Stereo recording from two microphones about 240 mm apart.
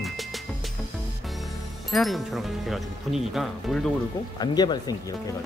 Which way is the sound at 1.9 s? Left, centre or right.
Centre.